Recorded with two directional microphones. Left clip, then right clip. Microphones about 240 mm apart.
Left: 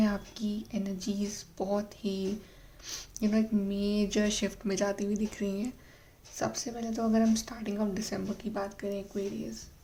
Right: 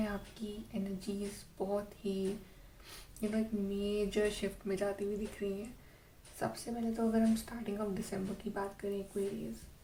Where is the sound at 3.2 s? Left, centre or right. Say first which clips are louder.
Left 6 dB; left.